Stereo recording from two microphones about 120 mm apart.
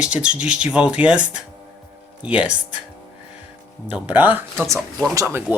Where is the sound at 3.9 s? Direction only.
15° right (ahead or behind).